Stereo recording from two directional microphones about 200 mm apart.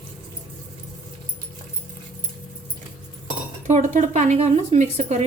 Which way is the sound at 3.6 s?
35° right (ahead or behind).